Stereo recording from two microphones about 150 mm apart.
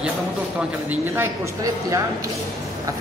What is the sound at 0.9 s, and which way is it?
A woman's voice, 15° right (ahead or behind).